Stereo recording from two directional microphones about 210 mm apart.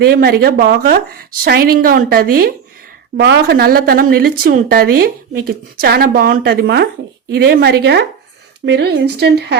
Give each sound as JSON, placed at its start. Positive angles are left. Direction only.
{"t": 0.0, "sound": "a woman's voice", "side_deg": -50}